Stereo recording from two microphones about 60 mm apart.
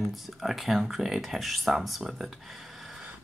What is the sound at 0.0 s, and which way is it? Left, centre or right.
Speech, centre.